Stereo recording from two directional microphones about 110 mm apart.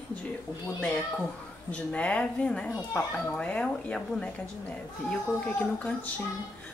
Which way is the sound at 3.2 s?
10° left (ahead or behind).